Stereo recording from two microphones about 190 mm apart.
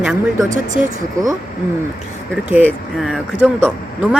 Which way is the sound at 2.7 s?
Centre (ahead or behind).